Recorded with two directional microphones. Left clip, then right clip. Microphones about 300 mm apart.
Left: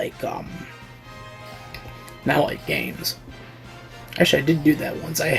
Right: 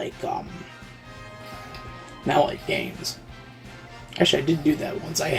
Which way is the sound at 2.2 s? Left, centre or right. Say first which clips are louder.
Even; left.